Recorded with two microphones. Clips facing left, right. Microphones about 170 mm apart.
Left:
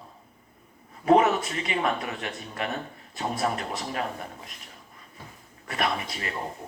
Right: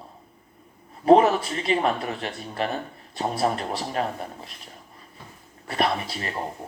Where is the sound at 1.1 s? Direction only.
35° right (ahead or behind).